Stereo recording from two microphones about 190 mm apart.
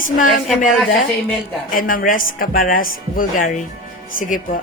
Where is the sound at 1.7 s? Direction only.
45° left (ahead or behind).